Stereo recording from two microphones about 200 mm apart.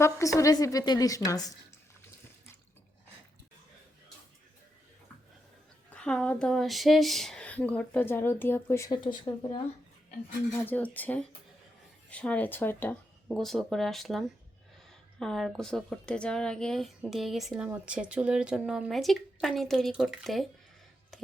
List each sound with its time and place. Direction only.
0.0 s speech: 15° left (ahead or behind)
5.9 s speech: 5° left (ahead or behind); by 9.6 s 20° left (ahead or behind)
10.5 s a woman's voice: 10° left (ahead or behind)